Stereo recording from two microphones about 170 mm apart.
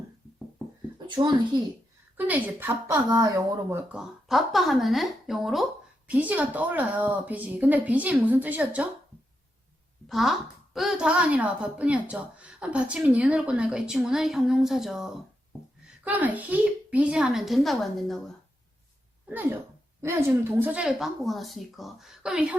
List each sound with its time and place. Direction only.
0.9 s a child's voice: 25° right (ahead or behind)
2.1 s a woman's voice: 10° right (ahead or behind)
3.9 s a woman's voice: centre (ahead or behind)
10.1 s speech: centre (ahead or behind)
19.3 s a woman's voice: 10° right (ahead or behind)